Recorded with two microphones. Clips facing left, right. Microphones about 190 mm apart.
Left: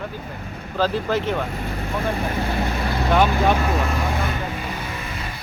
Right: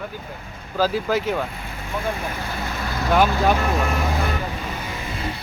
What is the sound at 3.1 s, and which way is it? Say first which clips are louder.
Speech: even; 5° right (ahead or behind).